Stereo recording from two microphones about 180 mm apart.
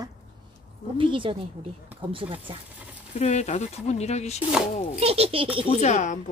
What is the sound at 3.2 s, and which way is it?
Speech, 40° left (ahead or behind).